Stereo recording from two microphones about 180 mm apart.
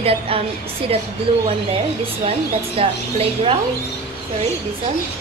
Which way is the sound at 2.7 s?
30° right (ahead or behind).